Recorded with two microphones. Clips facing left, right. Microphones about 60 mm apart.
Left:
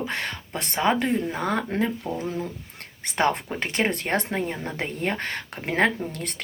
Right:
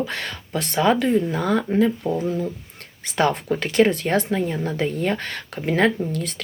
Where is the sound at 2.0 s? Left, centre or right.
Centre.